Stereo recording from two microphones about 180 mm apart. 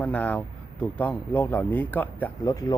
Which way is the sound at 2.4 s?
20° left (ahead or behind).